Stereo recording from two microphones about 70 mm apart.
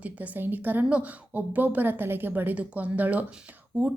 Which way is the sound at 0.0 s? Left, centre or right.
Right.